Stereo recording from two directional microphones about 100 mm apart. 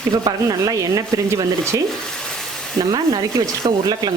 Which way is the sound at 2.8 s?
40° right (ahead or behind).